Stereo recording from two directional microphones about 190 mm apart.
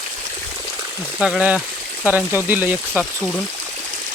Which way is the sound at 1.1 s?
Centre (ahead or behind).